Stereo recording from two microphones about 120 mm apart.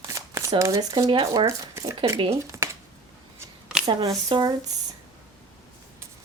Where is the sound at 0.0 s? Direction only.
25° right (ahead or behind).